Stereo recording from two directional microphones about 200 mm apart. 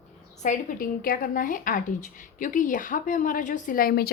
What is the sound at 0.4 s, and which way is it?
A woman's voice, 40° left (ahead or behind).